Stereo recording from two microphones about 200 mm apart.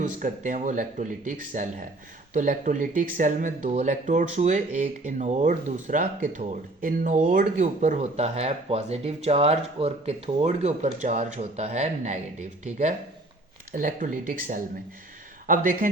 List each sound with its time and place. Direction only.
0.0 s speech: 40° right (ahead or behind)
13.7 s speech: 40° right (ahead or behind)